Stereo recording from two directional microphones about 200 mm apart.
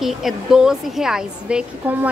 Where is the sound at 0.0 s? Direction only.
Centre (ahead or behind).